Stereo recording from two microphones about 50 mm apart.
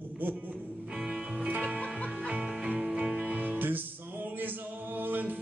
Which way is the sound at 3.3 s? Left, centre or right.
Right.